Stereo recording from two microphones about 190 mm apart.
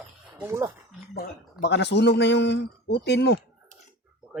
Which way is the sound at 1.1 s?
60° left (ahead or behind).